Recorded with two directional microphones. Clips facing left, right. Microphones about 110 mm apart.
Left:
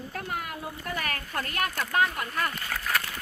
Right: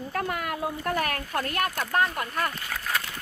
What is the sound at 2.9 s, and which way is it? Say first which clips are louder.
Dog: left 1 dB; 20° right (ahead or behind).